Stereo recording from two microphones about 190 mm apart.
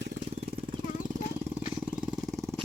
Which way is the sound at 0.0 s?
65° right (ahead or behind).